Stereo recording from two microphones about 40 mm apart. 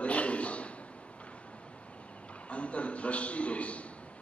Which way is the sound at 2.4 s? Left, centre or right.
Left.